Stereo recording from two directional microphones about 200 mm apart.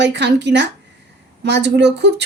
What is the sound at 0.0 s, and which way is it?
Speech, 60° right (ahead or behind).